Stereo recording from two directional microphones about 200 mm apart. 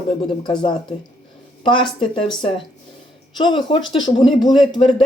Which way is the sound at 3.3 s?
25° left (ahead or behind).